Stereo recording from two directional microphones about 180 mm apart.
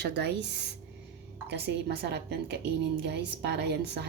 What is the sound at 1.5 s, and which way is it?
A woman's voice, 70° right (ahead or behind).